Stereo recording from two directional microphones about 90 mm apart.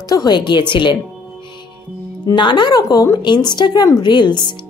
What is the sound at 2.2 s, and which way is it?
Speech, 60° left (ahead or behind).